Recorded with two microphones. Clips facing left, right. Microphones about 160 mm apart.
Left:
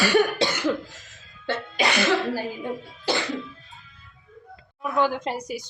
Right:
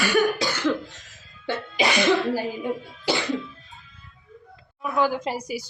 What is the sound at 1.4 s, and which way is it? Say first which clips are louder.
Speech: right 1 dB; 15° right (ahead or behind).